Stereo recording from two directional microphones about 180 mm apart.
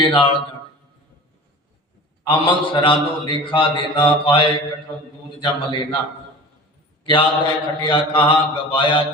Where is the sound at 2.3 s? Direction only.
30° left (ahead or behind).